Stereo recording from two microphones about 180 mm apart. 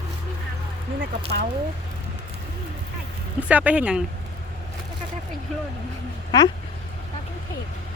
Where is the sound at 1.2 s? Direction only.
35° right (ahead or behind).